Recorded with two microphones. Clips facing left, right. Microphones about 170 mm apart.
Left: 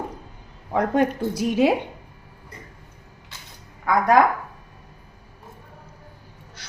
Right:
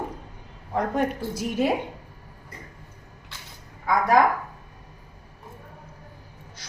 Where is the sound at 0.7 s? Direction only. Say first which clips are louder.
Left 4 dB; 80° left.